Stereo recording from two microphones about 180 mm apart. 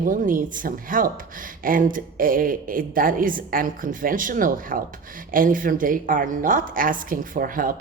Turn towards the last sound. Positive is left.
turn(degrees=-50)  # may be behind; listen again after turning